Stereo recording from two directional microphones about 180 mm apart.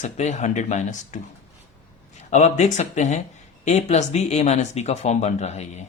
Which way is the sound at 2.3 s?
40° left (ahead or behind).